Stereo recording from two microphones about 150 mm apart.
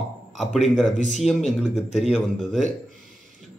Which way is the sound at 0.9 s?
55° left (ahead or behind).